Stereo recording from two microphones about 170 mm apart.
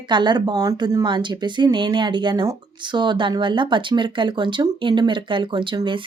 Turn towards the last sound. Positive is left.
turn(degrees=-30)  # may be behind; listen again after turning